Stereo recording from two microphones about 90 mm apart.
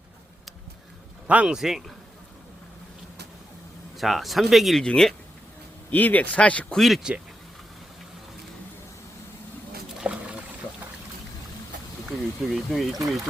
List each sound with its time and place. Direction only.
1.3 s speech: 15° right (ahead or behind)
1.5 s speech: 5° right (ahead or behind)
3.9 s speech: centre (ahead or behind)
5.9 s speech: 20° left (ahead or behind); by 7.1 s centre (ahead or behind)
10.0 s a sound: 15° right (ahead or behind)
12.0 s speech: centre (ahead or behind)